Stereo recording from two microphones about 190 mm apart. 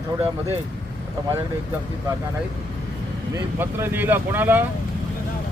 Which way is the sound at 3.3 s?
10° right (ahead or behind).